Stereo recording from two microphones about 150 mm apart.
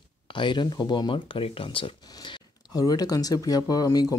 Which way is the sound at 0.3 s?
30° left (ahead or behind).